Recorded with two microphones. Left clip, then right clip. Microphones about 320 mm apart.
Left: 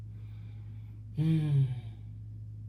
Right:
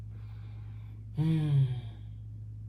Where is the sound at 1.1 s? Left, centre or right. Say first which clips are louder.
Even; centre.